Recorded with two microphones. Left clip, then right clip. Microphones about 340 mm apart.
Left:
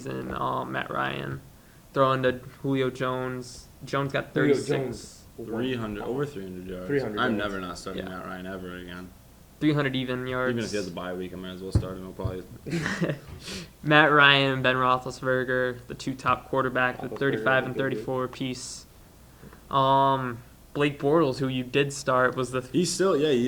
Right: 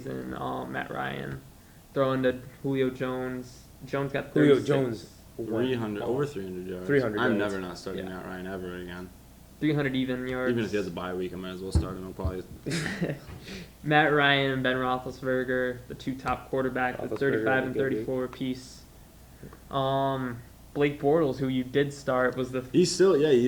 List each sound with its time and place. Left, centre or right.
0.0 s speech: left
5.6 s speech: centre
6.8 s a man's voice: right
7.2 s speech: centre
9.6 s speech: left
10.5 s speech: centre
12.8 s speech: left
22.7 s speech: centre